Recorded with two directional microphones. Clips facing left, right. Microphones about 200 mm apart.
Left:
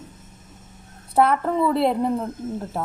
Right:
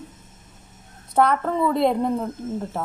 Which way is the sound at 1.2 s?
5° left (ahead or behind).